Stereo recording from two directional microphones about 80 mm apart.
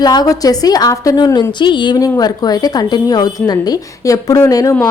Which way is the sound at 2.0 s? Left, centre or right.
Left.